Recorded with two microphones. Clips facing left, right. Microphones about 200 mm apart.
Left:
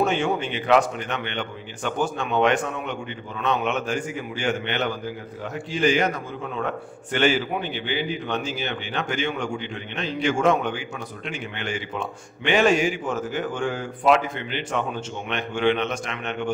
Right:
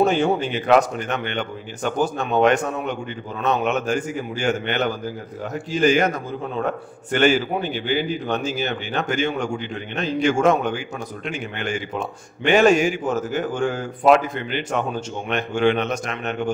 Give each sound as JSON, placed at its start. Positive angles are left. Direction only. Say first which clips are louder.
{"t": 0.0, "sound": "a man's voice", "louder": "right 4 dB", "side_deg": -40}